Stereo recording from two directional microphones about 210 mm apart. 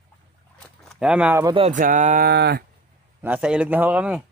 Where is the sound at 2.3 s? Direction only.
50° right (ahead or behind).